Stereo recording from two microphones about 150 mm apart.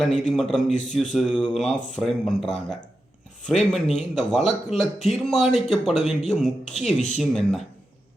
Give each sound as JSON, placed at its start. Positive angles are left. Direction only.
{"t": 0.0, "sound": "speech", "side_deg": 0}
{"t": 0.7, "sound": "a man's voice", "side_deg": 50}
{"t": 1.1, "sound": "speech", "side_deg": 5}